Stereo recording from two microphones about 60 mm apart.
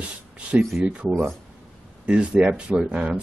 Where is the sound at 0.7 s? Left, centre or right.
Right.